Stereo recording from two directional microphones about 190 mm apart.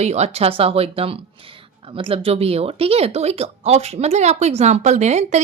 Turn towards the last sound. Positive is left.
turn(degrees=-35)  # may be behind; listen again after turning